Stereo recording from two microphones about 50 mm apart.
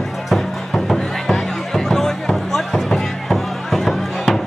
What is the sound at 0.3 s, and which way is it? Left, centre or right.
Music, centre.